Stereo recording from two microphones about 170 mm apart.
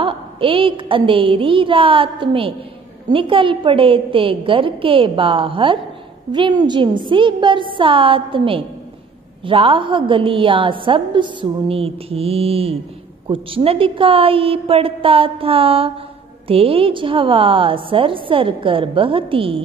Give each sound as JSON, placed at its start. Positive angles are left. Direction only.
{"t": 0.0, "sound": "a woman's voice", "side_deg": -30}